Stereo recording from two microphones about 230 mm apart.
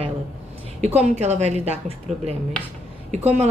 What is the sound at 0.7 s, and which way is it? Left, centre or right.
A woman's voice, right.